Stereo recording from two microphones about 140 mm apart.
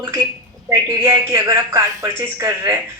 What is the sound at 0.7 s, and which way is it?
A woman's voice, 20° right (ahead or behind).